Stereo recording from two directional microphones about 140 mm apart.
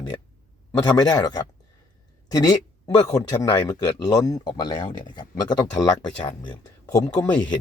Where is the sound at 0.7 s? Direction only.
30° left (ahead or behind).